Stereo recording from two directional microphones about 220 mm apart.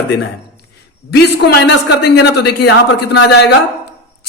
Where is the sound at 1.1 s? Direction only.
50° left (ahead or behind).